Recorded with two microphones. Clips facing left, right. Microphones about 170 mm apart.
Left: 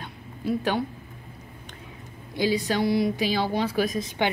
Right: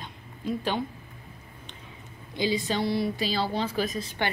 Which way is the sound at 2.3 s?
10° left (ahead or behind).